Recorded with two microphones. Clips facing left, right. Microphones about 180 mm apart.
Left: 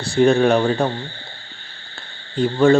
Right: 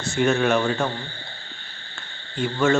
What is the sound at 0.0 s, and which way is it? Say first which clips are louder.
Speech: left 6 dB; 35° left (ahead or behind).